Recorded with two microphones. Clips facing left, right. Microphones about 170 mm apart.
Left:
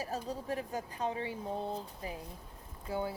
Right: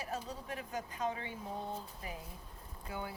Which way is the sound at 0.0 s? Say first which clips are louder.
Left 4 dB; 35° left (ahead or behind).